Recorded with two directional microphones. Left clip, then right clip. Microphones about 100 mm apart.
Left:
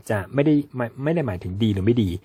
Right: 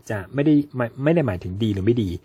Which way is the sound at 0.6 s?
Centre (ahead or behind).